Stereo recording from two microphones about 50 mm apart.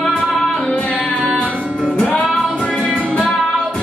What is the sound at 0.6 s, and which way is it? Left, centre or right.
Music, left.